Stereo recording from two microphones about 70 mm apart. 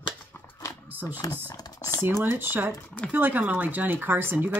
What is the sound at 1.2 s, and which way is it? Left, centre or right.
Speech, left.